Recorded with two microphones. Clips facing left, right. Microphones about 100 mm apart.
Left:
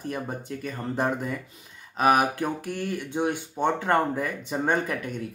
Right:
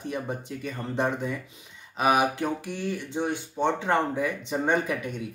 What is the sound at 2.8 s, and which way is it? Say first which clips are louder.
Speech: even; 10° left (ahead or behind).